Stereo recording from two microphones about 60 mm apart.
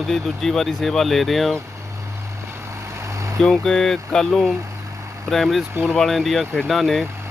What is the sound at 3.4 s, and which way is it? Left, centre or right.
Speech, centre.